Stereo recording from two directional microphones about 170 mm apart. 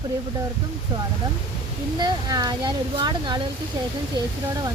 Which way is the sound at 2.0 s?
25° right (ahead or behind).